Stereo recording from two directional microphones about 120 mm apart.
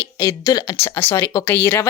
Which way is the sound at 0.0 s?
20° left (ahead or behind).